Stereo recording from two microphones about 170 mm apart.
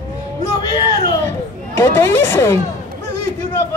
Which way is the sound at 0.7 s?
25° left (ahead or behind).